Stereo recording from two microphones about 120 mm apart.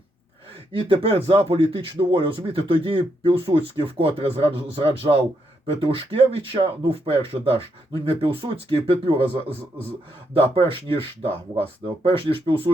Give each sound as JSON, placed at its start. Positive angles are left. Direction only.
{"t": 0.7, "sound": "speech", "side_deg": -50}